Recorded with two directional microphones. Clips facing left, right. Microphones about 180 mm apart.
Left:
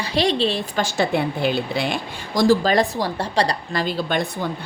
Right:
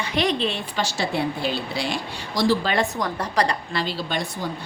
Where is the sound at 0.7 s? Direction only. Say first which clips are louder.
Left 4 dB; 55° left (ahead or behind).